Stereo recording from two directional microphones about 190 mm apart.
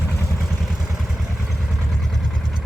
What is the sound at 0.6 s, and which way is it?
Vehicle, centre (ahead or behind).